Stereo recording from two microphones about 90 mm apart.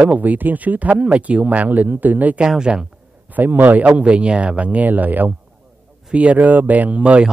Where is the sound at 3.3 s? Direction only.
20° right (ahead or behind).